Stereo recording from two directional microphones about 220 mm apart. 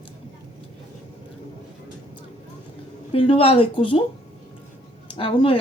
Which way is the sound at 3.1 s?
25° left (ahead or behind).